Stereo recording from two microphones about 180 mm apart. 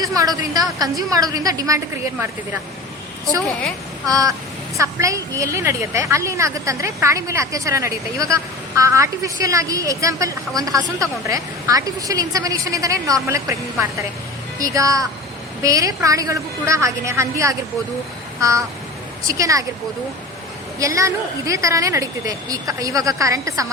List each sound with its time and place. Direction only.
0.0 s a woman's voice: 20° right (ahead or behind)
4.0 s a woman's voice: 20° right (ahead or behind)
18.3 s a sound: 15° right (ahead or behind)
19.3 s a woman's voice: 20° right (ahead or behind)
20.7 s a woman's voice: 15° right (ahead or behind)